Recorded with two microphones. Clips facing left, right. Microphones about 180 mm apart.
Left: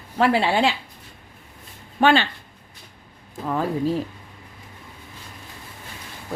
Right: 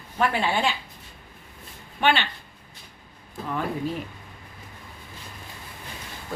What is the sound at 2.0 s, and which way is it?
Speech, 40° left (ahead or behind).